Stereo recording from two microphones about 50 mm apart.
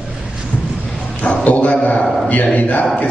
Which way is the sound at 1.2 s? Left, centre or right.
Left.